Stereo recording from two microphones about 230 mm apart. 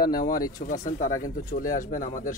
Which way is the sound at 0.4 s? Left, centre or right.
Left.